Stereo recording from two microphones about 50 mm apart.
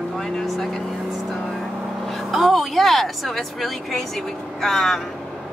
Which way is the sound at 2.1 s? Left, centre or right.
Centre.